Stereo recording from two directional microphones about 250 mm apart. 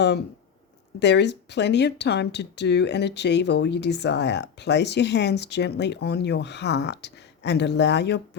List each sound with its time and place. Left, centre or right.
0.9 s speech: left